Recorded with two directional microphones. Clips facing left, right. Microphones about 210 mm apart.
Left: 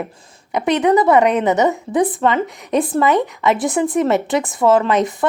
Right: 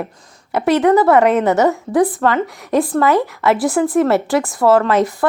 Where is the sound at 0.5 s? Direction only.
15° left (ahead or behind).